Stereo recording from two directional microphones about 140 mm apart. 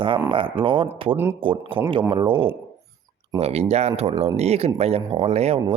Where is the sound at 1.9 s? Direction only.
40° right (ahead or behind).